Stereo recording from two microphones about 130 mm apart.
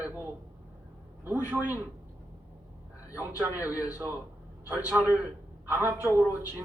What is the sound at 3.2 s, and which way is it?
Speech, 15° right (ahead or behind).